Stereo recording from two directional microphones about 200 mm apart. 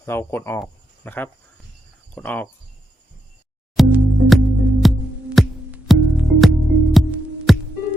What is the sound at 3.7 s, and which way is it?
Music, centre (ahead or behind).